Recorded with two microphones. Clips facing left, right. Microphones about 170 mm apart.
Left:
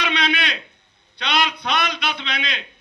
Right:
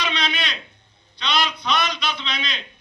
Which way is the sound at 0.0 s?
60° left (ahead or behind).